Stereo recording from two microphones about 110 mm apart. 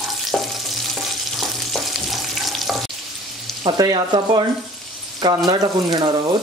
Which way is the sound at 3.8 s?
40° right (ahead or behind).